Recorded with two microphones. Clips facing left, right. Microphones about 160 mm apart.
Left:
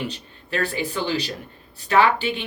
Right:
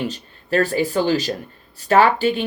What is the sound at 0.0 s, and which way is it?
Speech, 40° right (ahead or behind).